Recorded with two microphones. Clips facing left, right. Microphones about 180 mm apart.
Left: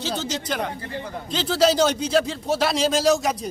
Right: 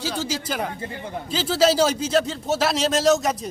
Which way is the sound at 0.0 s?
10° right (ahead or behind).